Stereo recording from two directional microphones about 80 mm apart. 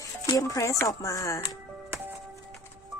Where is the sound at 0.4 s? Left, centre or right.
Left.